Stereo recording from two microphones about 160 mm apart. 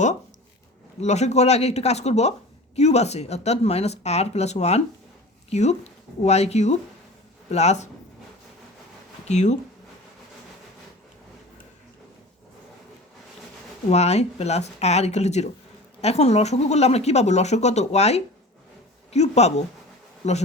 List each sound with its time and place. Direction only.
1.0 s speech: 45° left (ahead or behind)
9.2 s speech: 45° left (ahead or behind)
13.9 s speech: 40° left (ahead or behind)